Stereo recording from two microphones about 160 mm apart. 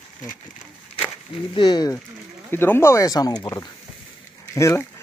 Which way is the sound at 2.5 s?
15° left (ahead or behind).